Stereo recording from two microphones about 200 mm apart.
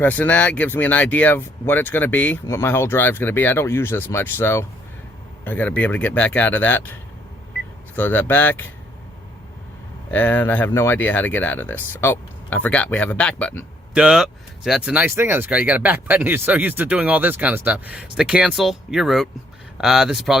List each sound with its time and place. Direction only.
0.0 s speech: 10° left (ahead or behind)
7.9 s speech: 10° left (ahead or behind)
10.1 s speech: 10° left (ahead or behind)
13.9 s speech: 5° right (ahead or behind)